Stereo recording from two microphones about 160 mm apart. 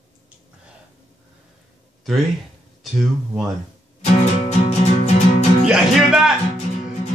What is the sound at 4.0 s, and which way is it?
Music, 40° left (ahead or behind).